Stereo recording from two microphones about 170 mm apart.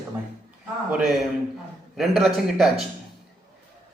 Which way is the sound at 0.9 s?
5° right (ahead or behind).